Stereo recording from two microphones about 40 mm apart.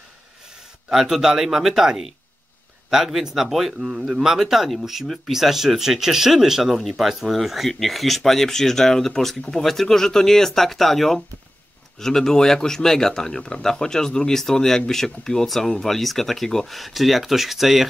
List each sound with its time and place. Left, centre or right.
0.9 s speech: centre
5.0 s speech: centre
5.3 s speech: centre